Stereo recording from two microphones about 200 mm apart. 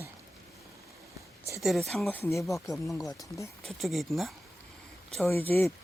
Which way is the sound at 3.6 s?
Centre (ahead or behind).